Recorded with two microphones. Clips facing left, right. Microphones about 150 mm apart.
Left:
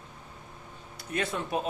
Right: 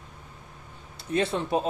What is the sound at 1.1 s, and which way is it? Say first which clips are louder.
Speech: right 5 dB; 30° right (ahead or behind).